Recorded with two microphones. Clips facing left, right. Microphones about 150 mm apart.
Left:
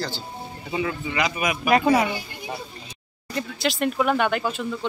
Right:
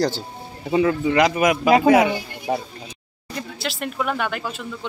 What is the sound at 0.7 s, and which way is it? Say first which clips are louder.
Speech: right 9 dB; 50° right (ahead or behind).